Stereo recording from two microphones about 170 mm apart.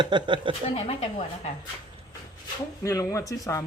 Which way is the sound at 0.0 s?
25° right (ahead or behind).